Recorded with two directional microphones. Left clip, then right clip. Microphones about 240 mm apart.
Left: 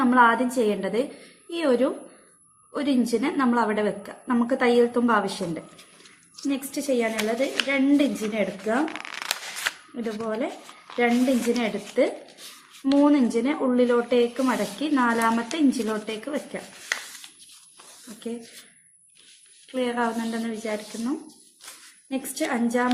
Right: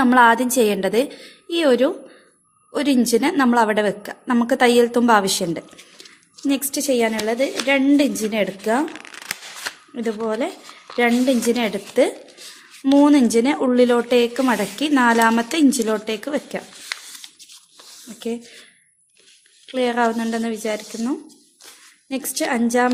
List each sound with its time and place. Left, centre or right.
0.0 s a woman's voice: right
8.9 s speech: centre
9.9 s a woman's voice: right
11.5 s a woman's voice: right
19.6 s speech: right
22.1 s speech: right